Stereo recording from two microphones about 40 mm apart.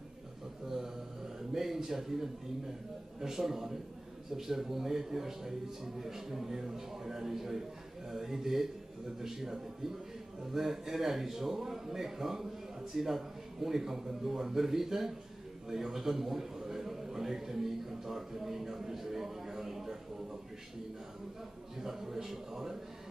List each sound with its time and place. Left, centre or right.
0.7 s mantra: centre
1.5 s a man's voice: centre
21.7 s a man's voice: centre